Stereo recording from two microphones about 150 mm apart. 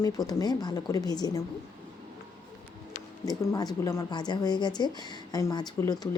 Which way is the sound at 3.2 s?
25° left (ahead or behind).